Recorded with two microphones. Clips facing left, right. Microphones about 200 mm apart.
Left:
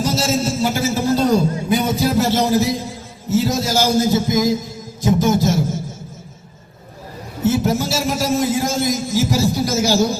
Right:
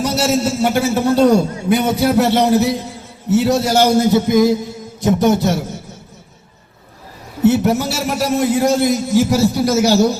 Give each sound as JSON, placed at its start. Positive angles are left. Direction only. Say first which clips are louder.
{"t": 0.0, "sound": "a man's voice", "louder": "right 3 dB", "side_deg": -65}
{"t": 4.9, "sound": "a sound", "louder": "right 2 dB", "side_deg": -65}
{"t": 7.4, "sound": "a man's voice", "louder": "right 4 dB", "side_deg": -65}